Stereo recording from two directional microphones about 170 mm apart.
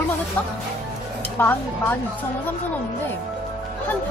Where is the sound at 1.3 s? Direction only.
10° left (ahead or behind).